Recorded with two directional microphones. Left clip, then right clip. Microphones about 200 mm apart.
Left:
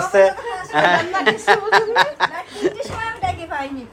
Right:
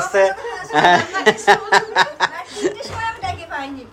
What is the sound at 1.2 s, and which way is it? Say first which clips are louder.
Chuckle: right 2 dB; 20° right (ahead or behind).